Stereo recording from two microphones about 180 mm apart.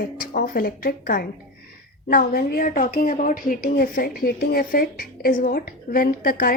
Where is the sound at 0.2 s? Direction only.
50° left (ahead or behind).